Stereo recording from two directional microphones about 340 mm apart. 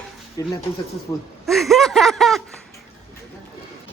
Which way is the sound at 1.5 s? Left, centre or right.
Centre.